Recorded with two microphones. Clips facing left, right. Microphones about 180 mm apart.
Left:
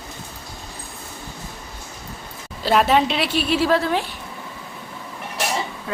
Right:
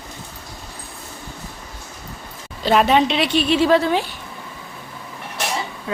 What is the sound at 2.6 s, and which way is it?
A woman's voice, 5° left (ahead or behind).